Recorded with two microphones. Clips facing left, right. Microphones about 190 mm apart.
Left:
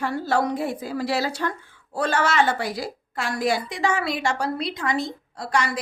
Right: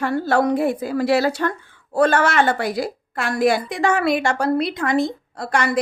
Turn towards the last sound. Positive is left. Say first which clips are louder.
# right 4 dB
turn(degrees=-55)  # may be behind; listen again after turning